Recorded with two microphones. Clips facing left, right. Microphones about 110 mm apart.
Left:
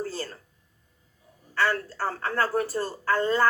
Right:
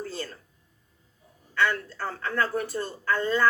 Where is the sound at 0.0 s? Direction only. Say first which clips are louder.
Left 2 dB; 35° left (ahead or behind).